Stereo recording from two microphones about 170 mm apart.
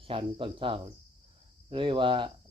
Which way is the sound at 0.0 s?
30° right (ahead or behind).